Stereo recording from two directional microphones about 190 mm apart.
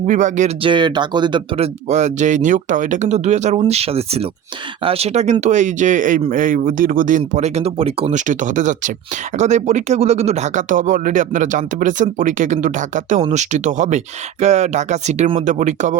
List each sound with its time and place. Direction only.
0.1 s speech: 40° right (ahead or behind)
0.6 s speech: 25° right (ahead or behind); by 16.0 s 40° right (ahead or behind)